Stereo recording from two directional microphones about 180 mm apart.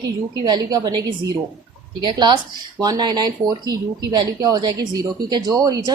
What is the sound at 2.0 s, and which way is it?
Speech, 25° right (ahead or behind).